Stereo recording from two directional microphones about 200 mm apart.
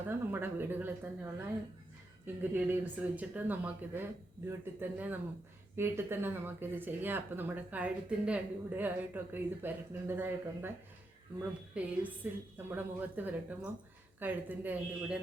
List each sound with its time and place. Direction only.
0.1 s speech: 10° right (ahead or behind)
11.7 s speech: 5° right (ahead or behind)